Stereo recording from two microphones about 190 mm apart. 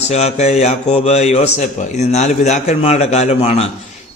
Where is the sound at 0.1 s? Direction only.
35° left (ahead or behind).